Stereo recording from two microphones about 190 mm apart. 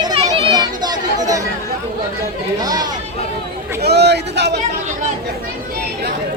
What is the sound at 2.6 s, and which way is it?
Speech, 20° right (ahead or behind).